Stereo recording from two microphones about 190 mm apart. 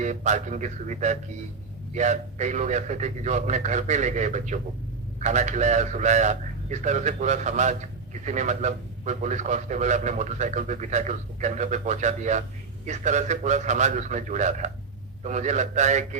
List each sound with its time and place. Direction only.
0.0 s a man's voice: 40° right (ahead or behind)